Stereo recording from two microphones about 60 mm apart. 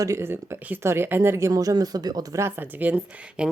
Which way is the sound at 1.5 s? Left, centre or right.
Right.